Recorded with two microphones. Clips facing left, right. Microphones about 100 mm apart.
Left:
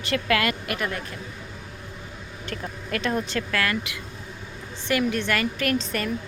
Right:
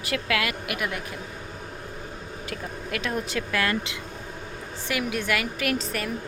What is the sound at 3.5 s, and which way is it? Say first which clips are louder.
Speech: right 1 dB; 25° right (ahead or behind).